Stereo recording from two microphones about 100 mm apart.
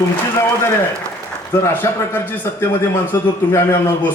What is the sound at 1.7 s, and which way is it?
A man's voice, 20° left (ahead or behind).